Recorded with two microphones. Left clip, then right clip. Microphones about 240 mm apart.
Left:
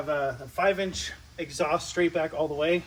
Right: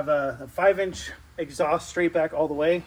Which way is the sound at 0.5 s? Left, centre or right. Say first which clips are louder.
Right 5 dB; right.